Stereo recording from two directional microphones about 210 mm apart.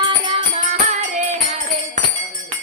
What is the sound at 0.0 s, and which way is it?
Music, 25° right (ahead or behind).